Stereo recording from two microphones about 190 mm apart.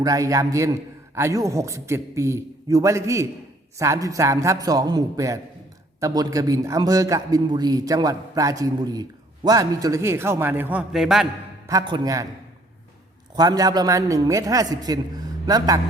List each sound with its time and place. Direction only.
0.0 s a man's voice: 20° right (ahead or behind); by 11.3 s centre (ahead or behind)
11.6 s a man's voice: 15° right (ahead or behind)
13.3 s a man's voice: 20° right (ahead or behind)